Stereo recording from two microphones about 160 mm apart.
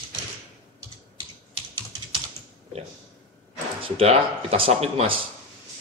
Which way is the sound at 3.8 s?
35° right (ahead or behind).